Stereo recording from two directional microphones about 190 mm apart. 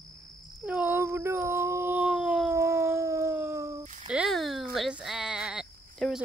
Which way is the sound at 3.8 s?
40° right (ahead or behind).